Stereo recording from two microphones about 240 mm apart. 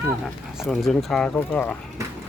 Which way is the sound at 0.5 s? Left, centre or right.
Centre.